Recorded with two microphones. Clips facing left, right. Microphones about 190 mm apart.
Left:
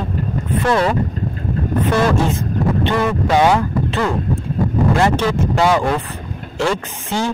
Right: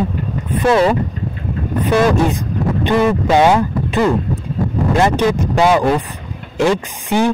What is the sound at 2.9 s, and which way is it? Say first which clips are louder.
A man's voice: right 7 dB; 20° right (ahead or behind).